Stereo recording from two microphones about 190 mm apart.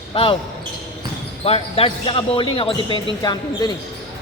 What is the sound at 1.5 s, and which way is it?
Speech, 30° left (ahead or behind).